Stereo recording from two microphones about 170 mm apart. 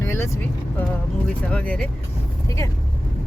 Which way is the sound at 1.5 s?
5° left (ahead or behind).